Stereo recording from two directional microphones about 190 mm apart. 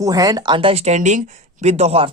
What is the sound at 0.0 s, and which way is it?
Speech, 20° right (ahead or behind).